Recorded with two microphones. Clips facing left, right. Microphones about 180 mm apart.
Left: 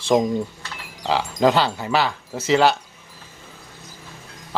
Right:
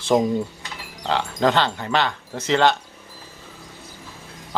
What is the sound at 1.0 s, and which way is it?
Speech, 5° left (ahead or behind).